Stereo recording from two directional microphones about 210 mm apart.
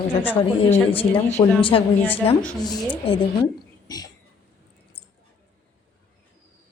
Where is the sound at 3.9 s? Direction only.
20° left (ahead or behind).